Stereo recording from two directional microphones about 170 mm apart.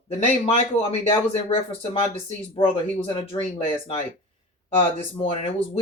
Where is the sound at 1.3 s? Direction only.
35° left (ahead or behind).